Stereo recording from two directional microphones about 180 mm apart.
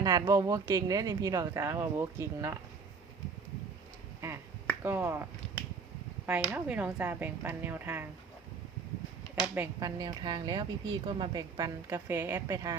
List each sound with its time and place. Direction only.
0.0 s speech: 20° right (ahead or behind)
4.2 s speech: 15° right (ahead or behind)
6.5 s speech: 10° right (ahead or behind)
9.3 s speech: 10° right (ahead or behind)
10.0 s speech: 25° right (ahead or behind)